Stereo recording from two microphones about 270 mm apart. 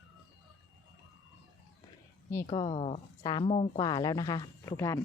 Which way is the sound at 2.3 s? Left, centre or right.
Centre.